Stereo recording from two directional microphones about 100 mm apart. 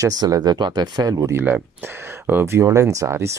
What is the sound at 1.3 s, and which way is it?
Speech, 25° right (ahead or behind).